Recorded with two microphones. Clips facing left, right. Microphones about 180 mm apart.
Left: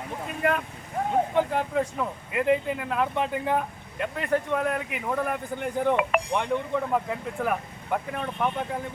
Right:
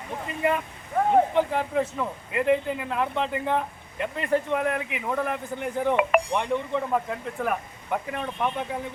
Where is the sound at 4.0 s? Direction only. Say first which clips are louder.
Right 1 dB; 5° right (ahead or behind).